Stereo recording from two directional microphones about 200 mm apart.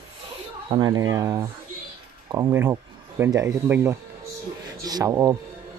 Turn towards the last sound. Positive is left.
turn(degrees=-15)  # may be behind; listen again after turning